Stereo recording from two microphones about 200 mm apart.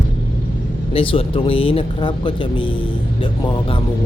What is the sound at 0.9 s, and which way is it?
Speech, 25° left (ahead or behind).